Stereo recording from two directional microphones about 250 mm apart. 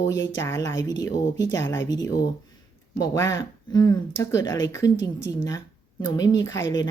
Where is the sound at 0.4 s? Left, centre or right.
Centre.